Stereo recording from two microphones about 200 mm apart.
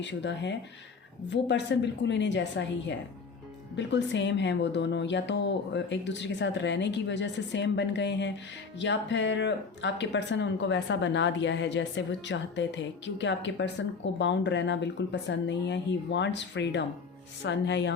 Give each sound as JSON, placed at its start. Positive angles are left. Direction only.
{"t": 0.0, "sound": "speech", "side_deg": 60}